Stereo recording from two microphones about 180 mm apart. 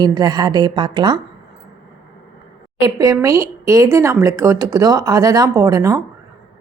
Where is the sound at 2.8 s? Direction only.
20° right (ahead or behind).